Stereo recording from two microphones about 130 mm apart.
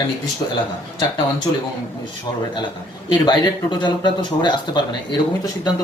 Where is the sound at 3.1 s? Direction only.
35° left (ahead or behind).